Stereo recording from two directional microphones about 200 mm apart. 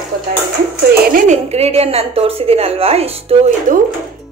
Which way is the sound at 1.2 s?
35° right (ahead or behind).